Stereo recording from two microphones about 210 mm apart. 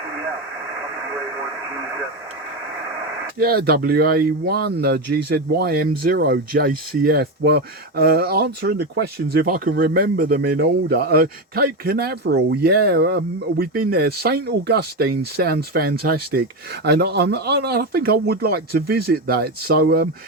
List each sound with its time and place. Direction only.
3.3 s speech: 45° right (ahead or behind)